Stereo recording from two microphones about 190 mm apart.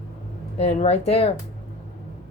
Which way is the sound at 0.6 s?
35° left (ahead or behind).